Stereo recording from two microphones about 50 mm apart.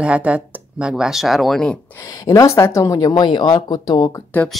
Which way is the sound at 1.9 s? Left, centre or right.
Left.